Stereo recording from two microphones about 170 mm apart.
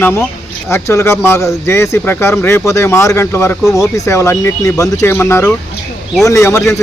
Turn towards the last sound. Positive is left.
turn(degrees=15)  # may be behind; listen again after turning